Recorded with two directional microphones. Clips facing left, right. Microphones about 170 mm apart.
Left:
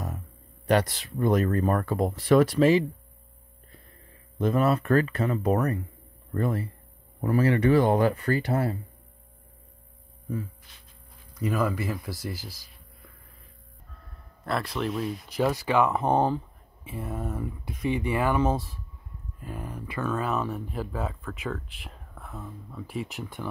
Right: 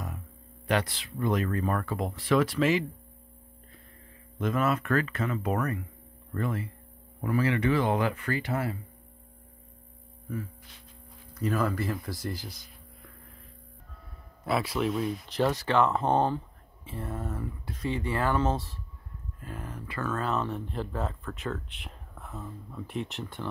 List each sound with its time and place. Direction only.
0.7 s speech: 40° left (ahead or behind)
4.4 s speech: 35° left (ahead or behind)
11.3 s speech: 10° left (ahead or behind)
14.4 s speech: 5° right (ahead or behind)